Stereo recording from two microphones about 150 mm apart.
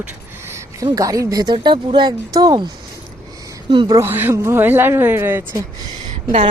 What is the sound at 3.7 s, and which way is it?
Speech, 30° right (ahead or behind).